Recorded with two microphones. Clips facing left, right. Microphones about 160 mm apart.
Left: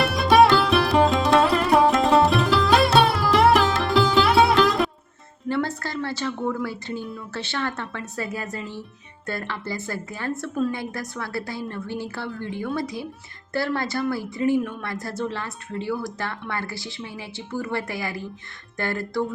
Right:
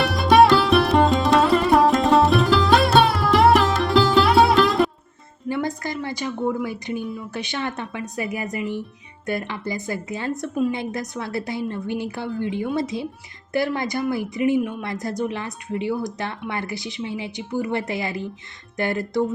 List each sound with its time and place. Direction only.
0.0 s music: centre (ahead or behind)
5.5 s a sound: 15° right (ahead or behind)
6.4 s a woman's voice: 20° right (ahead or behind)